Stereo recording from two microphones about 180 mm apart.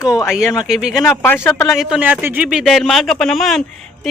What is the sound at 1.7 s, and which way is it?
Speech, 5° right (ahead or behind).